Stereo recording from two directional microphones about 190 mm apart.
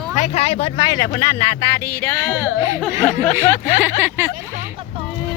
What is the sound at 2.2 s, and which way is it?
Speech, 10° right (ahead or behind).